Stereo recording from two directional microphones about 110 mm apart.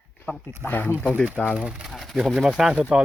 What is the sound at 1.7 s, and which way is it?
Speech, centre (ahead or behind).